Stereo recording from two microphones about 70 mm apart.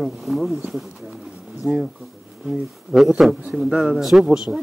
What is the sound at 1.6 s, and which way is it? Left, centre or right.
Speech, right.